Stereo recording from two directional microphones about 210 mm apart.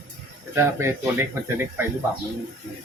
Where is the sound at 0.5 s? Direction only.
10° right (ahead or behind).